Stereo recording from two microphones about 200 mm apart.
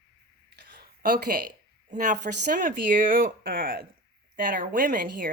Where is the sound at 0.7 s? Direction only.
50° right (ahead or behind).